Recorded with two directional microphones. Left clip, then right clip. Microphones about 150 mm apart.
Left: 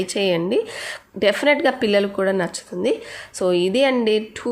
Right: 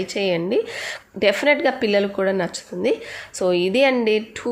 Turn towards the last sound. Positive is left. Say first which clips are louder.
# even
turn(degrees=5)  # may be behind; listen again after turning